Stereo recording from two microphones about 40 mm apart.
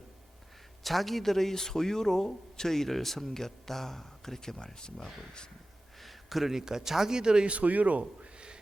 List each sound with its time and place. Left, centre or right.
0.9 s a man's voice: centre
6.0 s a man's voice: centre
7.5 s speech: right